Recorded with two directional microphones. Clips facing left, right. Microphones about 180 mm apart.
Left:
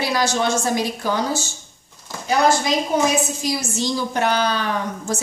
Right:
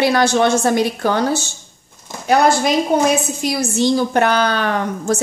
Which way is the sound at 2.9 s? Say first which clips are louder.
Right 4 dB; 60° right (ahead or behind).